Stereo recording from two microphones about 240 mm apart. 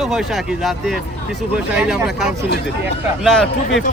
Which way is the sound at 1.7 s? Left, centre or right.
Centre.